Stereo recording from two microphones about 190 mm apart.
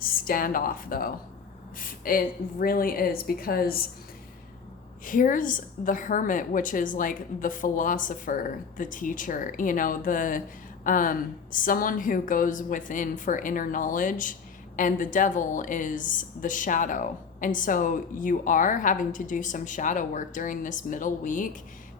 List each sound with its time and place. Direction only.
0.0 s a woman's voice: 50° left (ahead or behind)
5.0 s a woman's voice: 45° left (ahead or behind)